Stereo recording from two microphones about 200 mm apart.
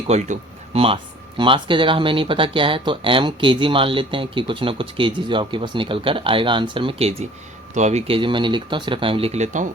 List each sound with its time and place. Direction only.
0.1 s speech: 30° right (ahead or behind)